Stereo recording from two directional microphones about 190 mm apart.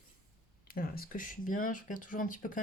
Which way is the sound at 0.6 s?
50° left (ahead or behind).